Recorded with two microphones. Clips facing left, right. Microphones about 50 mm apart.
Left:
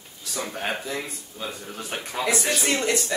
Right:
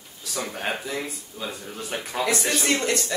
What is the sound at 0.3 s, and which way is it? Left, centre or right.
Speech, centre.